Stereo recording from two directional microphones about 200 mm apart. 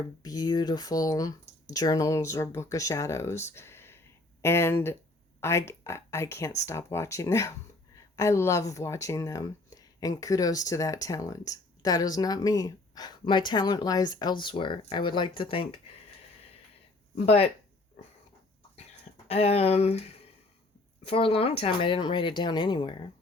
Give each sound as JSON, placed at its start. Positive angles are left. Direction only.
{"t": 0.2, "sound": "speech", "side_deg": 20}
{"t": 17.2, "sound": "speech", "side_deg": 30}
{"t": 19.3, "sound": "speech", "side_deg": 30}
{"t": 21.0, "sound": "speech", "side_deg": 30}